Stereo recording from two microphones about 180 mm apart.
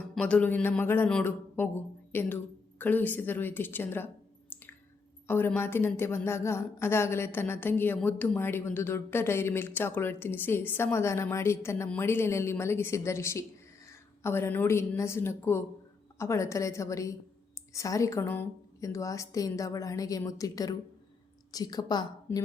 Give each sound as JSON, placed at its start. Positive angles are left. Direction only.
{"t": 0.1, "sound": "a woman's voice", "side_deg": 5}